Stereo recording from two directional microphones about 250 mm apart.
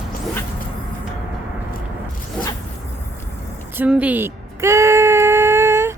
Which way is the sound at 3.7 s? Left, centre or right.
Centre.